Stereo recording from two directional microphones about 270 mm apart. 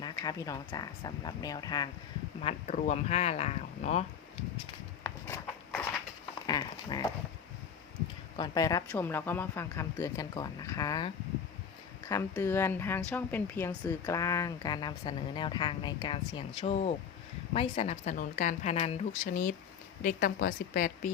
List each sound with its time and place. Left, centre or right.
0.0 s a woman's voice: centre
5.0 s a sound: centre
8.4 s a woman's voice: centre; by 21.1 s left